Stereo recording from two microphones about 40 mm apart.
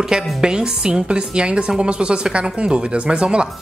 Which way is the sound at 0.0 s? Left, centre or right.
Centre.